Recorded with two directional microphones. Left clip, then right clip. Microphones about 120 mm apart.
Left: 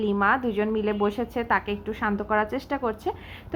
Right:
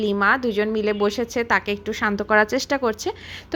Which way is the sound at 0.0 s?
40° right (ahead or behind).